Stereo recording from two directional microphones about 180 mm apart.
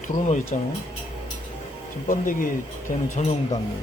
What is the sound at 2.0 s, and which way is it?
Speech, 50° left (ahead or behind).